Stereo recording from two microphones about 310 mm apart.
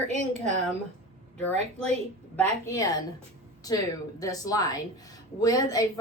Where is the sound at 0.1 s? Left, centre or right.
Right.